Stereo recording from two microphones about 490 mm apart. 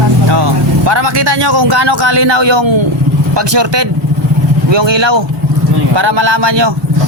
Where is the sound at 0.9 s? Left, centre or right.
Right.